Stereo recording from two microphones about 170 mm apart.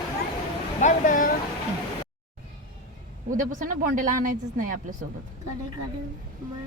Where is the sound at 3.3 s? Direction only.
50° right (ahead or behind).